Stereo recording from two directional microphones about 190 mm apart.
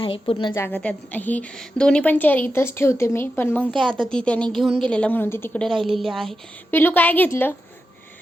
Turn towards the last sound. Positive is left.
turn(degrees=10)  # may be behind; listen again after turning